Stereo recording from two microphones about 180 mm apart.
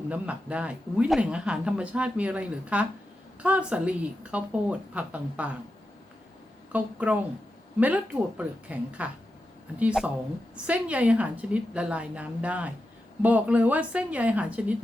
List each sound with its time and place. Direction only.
0.1 s speech: 5° right (ahead or behind)
6.7 s speech: 10° right (ahead or behind)